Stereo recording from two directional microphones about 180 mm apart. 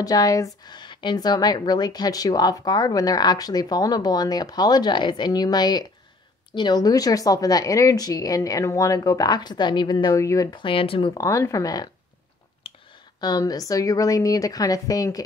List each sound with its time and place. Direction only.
0.0 s speech: 20° left (ahead or behind)
11.2 s speech: 15° left (ahead or behind)
12.6 s a sound: 35° left (ahead or behind)
13.2 s speech: 20° left (ahead or behind)